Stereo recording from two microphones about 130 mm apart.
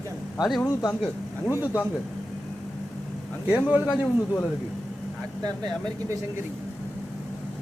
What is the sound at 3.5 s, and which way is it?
Speech, 10° right (ahead or behind).